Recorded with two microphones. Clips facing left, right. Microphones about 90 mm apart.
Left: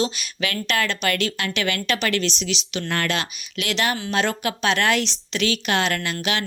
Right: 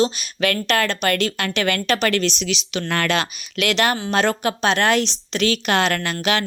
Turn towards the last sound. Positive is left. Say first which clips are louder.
# right 4 dB
turn(degrees=-45)  # may be behind; listen again after turning